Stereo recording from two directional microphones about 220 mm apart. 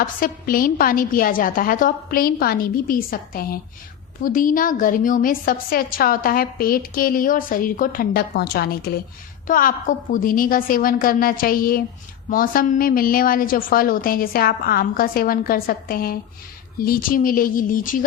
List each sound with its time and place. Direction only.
0.0 s a woman's voice: 40° left (ahead or behind)